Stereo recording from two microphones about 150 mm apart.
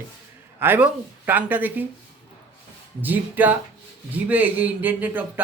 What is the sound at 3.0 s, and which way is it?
Speech, 10° right (ahead or behind).